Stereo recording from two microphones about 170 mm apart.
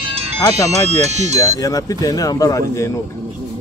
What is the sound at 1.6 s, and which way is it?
Speech, 20° left (ahead or behind).